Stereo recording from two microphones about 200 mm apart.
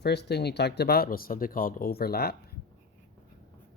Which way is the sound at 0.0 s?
55° left (ahead or behind).